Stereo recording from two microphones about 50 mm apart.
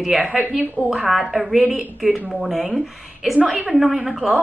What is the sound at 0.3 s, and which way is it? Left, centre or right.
Speech, centre.